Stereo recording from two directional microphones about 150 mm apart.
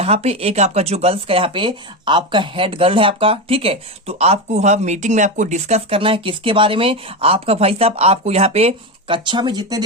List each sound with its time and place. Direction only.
0.0 s speech: 45° right (ahead or behind); by 9.8 s 25° right (ahead or behind)